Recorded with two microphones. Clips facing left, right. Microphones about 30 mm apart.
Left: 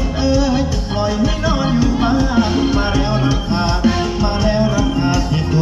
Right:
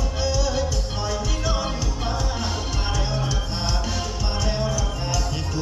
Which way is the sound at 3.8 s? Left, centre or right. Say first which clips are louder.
Left 12 dB; left.